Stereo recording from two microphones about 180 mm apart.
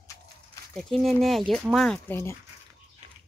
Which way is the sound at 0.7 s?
Centre (ahead or behind).